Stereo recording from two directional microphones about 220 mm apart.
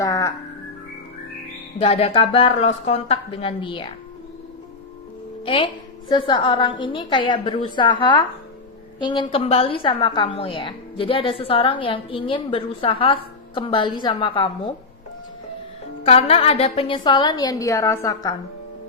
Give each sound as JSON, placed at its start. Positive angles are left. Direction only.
{"t": 0.0, "sound": "music", "side_deg": 15}
{"t": 1.8, "sound": "a woman's voice", "side_deg": 25}
{"t": 6.1, "sound": "a woman's voice", "side_deg": 20}
{"t": 16.0, "sound": "a woman's voice", "side_deg": 25}